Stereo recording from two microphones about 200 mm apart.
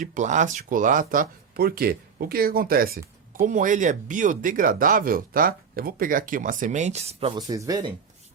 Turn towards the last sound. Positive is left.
turn(degrees=-20)  # may be behind; listen again after turning